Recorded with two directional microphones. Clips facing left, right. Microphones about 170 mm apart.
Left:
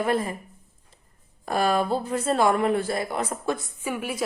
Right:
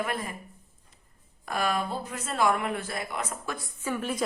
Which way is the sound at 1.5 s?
35° left (ahead or behind).